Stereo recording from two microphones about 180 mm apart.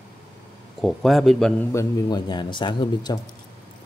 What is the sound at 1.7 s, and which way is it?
Speech, 20° left (ahead or behind).